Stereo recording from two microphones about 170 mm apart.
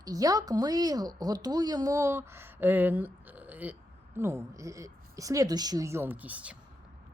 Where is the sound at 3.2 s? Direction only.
10° right (ahead or behind).